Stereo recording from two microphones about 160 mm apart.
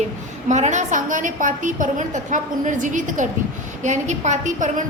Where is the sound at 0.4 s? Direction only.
50° right (ahead or behind).